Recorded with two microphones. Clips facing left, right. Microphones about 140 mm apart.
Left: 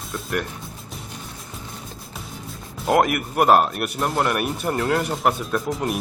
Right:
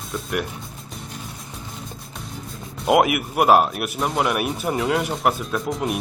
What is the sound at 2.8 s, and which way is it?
A man's voice, 5° right (ahead or behind).